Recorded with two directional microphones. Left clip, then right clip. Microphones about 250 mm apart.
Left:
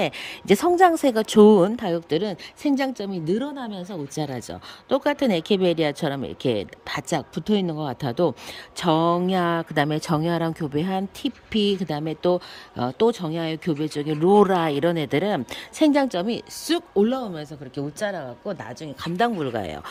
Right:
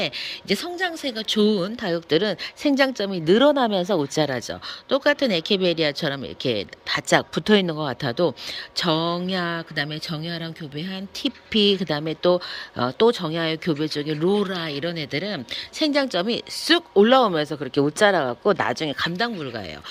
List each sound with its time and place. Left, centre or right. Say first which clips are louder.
0.0 s speech: left 1 dB; centre
17.2 s speech: right 12 dB; centre
17.8 s speech: right 10 dB; right
18.9 s speech: left 1 dB; centre